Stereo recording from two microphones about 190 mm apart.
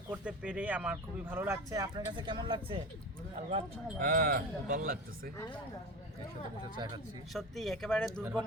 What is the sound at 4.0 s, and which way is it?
Speech, 50° right (ahead or behind).